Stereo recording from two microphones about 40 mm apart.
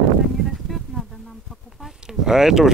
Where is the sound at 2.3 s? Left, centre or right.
Centre.